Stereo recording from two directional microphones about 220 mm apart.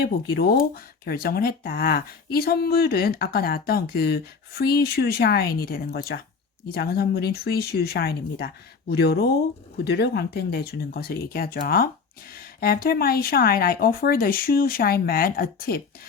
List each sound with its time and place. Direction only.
0.0 s speech: 45° left (ahead or behind)